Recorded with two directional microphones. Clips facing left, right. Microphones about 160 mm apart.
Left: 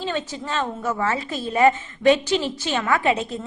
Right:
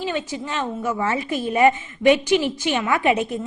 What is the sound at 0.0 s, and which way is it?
A woman's voice, 15° right (ahead or behind).